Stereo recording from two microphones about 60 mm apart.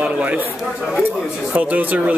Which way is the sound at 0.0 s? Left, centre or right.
Right.